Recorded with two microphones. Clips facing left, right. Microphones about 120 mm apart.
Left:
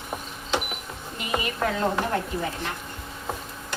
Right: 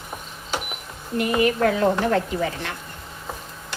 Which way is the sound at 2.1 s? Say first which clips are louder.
Right 5 dB; 90° right.